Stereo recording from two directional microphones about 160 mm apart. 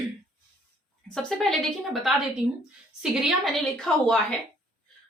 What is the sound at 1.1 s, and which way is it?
A woman's voice, 5° left (ahead or behind).